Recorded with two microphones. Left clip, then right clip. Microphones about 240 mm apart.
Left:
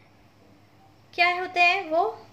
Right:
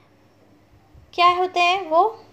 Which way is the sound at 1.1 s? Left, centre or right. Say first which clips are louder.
Right 6 dB; centre.